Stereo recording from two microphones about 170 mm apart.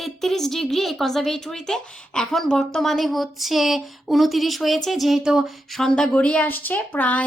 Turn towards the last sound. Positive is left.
turn(degrees=10)  # may be behind; listen again after turning